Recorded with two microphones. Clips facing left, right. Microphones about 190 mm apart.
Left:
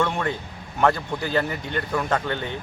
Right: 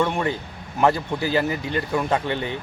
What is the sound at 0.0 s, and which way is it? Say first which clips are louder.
Speech: right 2 dB; 10° right (ahead or behind).